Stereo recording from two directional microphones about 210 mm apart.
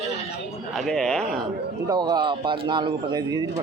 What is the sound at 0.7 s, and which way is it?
Speech, centre (ahead or behind).